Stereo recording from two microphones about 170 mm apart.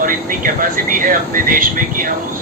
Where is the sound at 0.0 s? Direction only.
55° right (ahead or behind).